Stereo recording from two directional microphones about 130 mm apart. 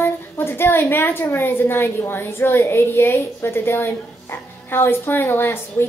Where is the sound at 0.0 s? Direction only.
15° left (ahead or behind).